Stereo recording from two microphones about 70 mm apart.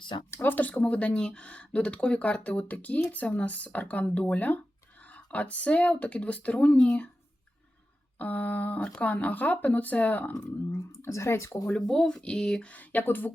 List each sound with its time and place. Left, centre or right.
0.3 s a sound: left
0.5 s speech: left
8.2 s speech: left
10.7 s speech: left
11.7 s speech: centre
12.7 s speech: left